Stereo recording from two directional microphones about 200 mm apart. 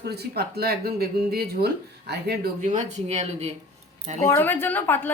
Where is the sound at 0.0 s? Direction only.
55° right (ahead or behind); by 3.5 s 35° right (ahead or behind).